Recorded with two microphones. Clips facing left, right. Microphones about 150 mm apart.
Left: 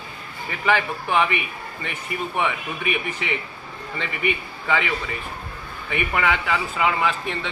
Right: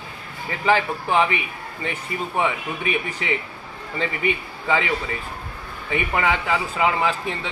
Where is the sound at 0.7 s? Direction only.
30° right (ahead or behind).